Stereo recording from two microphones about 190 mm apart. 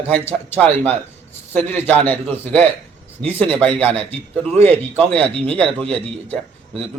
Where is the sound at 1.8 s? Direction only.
10° left (ahead or behind).